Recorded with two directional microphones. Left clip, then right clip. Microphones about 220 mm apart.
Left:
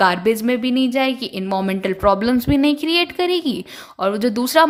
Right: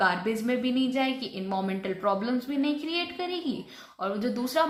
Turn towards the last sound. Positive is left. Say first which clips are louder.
# left 12 dB
turn(degrees=40)  # may be behind; listen again after turning